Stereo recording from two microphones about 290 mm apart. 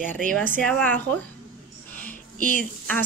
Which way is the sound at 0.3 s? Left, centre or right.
Centre.